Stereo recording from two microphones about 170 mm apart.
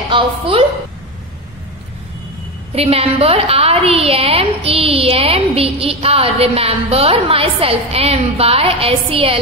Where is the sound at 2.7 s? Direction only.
35° right (ahead or behind).